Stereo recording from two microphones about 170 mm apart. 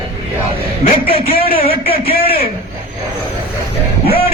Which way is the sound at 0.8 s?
35° left (ahead or behind).